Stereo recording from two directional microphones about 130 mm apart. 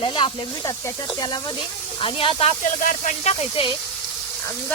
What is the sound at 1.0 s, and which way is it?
Speech, 35° left (ahead or behind).